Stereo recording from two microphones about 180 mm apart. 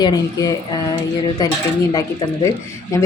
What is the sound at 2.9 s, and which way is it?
Speech, 15° left (ahead or behind).